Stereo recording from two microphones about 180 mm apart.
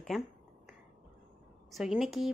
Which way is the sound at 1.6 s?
Centre (ahead or behind).